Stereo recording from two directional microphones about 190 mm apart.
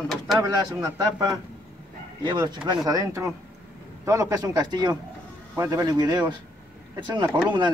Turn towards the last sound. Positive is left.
turn(degrees=-25)  # may be behind; listen again after turning